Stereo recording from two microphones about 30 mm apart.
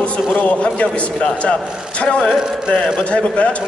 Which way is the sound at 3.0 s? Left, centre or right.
Left.